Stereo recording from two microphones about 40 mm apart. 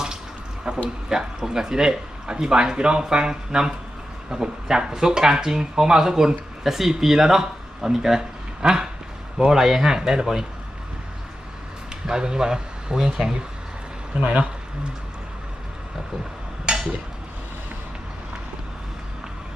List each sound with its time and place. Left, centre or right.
1.1 s speech: centre
12.0 s speech: centre
14.2 s speech: right
16.7 s a sound: right